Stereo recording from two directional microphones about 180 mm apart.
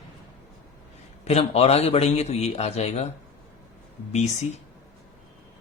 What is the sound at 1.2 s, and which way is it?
Speech, 35° left (ahead or behind).